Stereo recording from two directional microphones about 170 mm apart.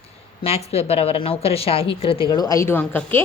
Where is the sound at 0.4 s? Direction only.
35° left (ahead or behind).